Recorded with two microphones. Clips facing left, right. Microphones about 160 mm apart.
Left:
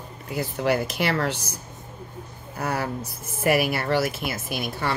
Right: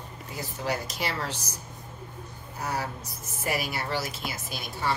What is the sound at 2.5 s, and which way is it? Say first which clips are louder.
A woman's voice: left 5 dB; 65° left (ahead or behind).